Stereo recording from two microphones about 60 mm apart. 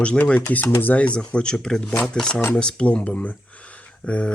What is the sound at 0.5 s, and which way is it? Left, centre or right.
Speech, left.